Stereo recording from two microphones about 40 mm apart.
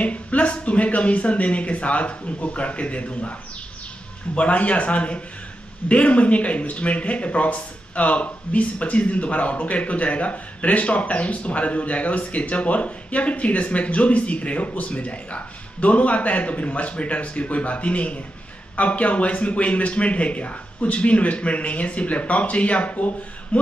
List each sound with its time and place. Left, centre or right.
0.0 s speech: left
4.4 s speech: left